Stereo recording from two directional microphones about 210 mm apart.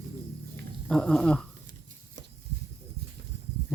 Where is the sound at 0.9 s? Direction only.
5° left (ahead or behind).